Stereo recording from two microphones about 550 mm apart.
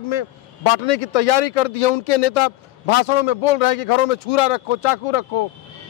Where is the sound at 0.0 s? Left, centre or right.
Left.